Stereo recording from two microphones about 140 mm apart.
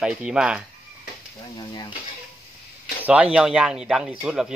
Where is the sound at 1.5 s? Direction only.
30° left (ahead or behind).